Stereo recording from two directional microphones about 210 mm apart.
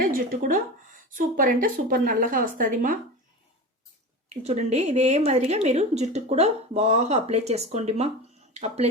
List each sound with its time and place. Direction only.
0.0 s a woman's voice: 40° right (ahead or behind)
4.3 s a woman's voice: 30° right (ahead or behind)